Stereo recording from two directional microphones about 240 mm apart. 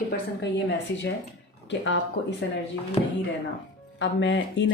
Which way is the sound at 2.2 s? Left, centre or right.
Left.